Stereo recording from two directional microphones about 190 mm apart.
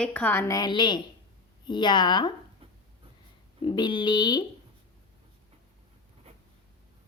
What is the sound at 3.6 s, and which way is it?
Speech, 25° left (ahead or behind).